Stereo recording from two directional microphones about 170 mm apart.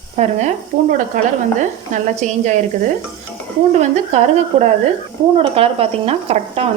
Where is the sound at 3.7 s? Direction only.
40° right (ahead or behind).